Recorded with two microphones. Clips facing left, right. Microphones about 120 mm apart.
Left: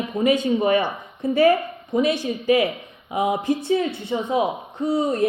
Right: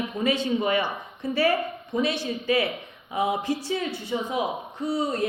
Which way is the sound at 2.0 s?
15° left (ahead or behind).